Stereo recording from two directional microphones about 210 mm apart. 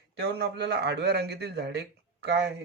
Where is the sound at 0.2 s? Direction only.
50° right (ahead or behind).